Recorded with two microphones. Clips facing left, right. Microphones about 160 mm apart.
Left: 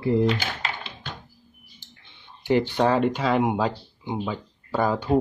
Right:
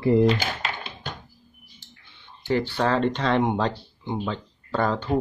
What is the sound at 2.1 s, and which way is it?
Speech, 15° left (ahead or behind).